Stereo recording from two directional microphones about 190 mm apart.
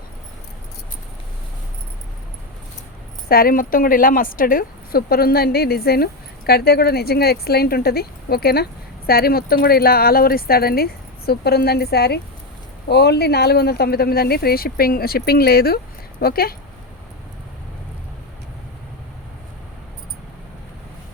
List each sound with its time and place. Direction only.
3.2 s a woman's voice: 50° left (ahead or behind)